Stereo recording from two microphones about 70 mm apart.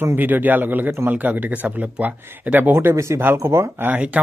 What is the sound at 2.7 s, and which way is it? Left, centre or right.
A man's voice, right.